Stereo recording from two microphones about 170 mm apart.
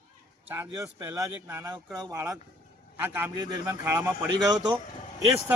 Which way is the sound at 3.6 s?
20° right (ahead or behind).